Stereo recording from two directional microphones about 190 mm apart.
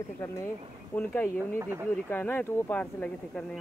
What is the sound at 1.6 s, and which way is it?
Speech, 10° right (ahead or behind).